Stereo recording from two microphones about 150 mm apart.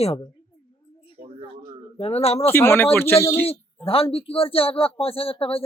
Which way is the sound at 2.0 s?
40° left (ahead or behind).